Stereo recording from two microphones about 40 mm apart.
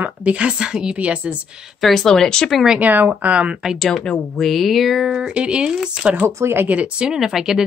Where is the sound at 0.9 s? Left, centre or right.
Right.